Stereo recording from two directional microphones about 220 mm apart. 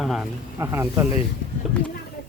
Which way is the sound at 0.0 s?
Centre (ahead or behind).